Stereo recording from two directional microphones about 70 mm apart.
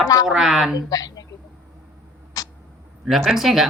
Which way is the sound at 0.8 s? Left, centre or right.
Left.